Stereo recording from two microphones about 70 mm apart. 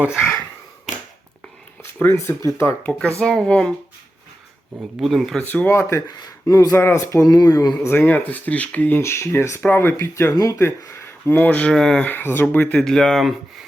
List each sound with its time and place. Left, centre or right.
1.8 s a sound: left
2.1 s speech: left
2.8 s speech: centre
4.9 s speech: centre
5.6 s speech: left
6.1 s speech: left
7.3 s speech: left
7.8 s speech: left
9.0 s speech: left
10.3 s speech: left
11.3 s speech: left
11.7 s speech: centre
12.0 s speech: left
12.7 s speech: centre